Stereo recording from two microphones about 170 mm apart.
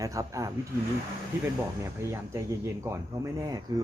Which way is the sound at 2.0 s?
15° right (ahead or behind).